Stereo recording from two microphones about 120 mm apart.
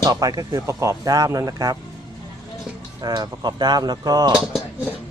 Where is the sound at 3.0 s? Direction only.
35° right (ahead or behind).